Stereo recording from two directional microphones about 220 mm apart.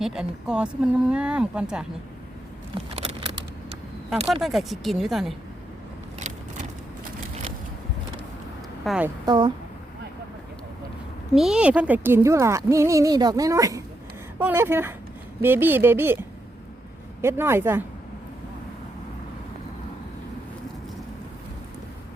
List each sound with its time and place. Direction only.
0.0 s speech: 5° right (ahead or behind)
2.9 s vehicle: 25° right (ahead or behind)
4.4 s speech: centre (ahead or behind)
8.8 s a woman's voice: centre (ahead or behind)
9.2 s speech: 20° right (ahead or behind)
11.3 s speech: 5° right (ahead or behind)
17.2 s speech: 10° right (ahead or behind)